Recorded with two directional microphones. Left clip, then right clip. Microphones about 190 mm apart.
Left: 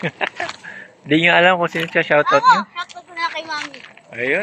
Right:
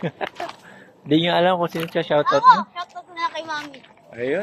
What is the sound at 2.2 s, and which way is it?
Speech, 20° left (ahead or behind).